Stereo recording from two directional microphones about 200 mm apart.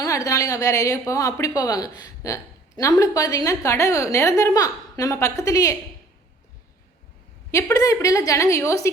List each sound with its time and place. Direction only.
0.0 s a woman's voice: 15° left (ahead or behind)
7.5 s a woman's voice: 15° left (ahead or behind)